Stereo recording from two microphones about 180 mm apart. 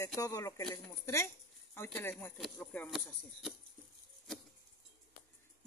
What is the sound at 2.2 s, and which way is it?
Speech, 5° left (ahead or behind).